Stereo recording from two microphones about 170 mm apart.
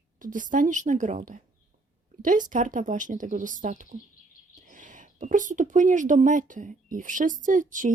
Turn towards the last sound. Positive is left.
turn(degrees=-50)  # may be behind; listen again after turning